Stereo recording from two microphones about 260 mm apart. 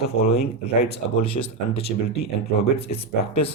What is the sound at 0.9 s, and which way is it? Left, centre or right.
Speech, left.